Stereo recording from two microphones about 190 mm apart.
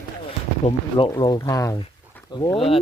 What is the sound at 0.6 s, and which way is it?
Speech, 40° left (ahead or behind).